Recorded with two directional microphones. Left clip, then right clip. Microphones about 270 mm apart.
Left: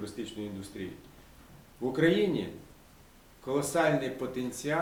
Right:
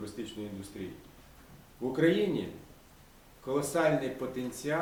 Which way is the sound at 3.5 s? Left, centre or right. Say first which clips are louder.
Left 1 dB; centre.